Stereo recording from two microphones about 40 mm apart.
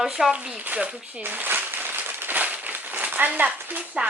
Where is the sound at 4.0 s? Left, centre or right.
Right.